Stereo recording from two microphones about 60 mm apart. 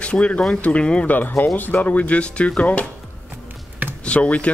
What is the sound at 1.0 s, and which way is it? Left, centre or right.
Speech, left.